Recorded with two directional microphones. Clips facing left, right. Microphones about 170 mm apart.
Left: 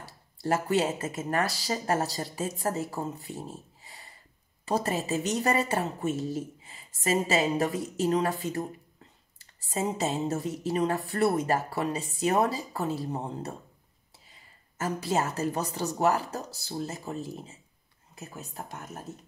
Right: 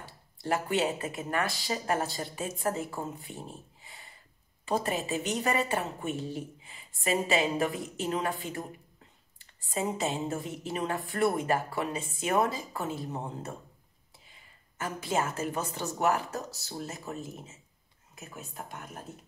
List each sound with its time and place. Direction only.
0.5 s a woman's voice: 40° left (ahead or behind)